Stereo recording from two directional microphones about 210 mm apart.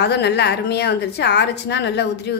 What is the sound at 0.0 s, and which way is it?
A woman's voice, 55° left (ahead or behind).